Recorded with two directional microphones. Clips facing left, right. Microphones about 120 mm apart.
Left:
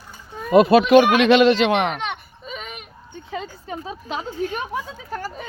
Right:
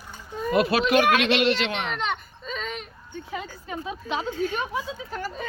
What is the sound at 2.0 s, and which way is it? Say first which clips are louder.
Baby cry: even; 10° left (ahead or behind).